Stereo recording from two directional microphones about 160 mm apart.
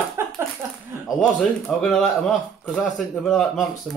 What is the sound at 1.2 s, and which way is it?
Speech, 5° left (ahead or behind).